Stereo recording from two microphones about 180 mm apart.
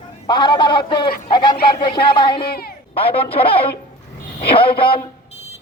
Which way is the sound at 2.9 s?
30° left (ahead or behind).